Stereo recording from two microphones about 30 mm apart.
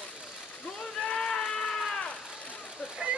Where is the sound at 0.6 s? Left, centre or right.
Left.